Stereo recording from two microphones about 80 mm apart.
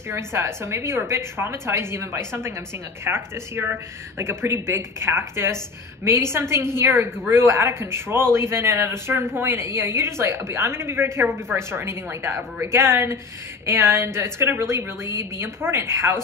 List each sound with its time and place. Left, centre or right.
0.1 s speech: right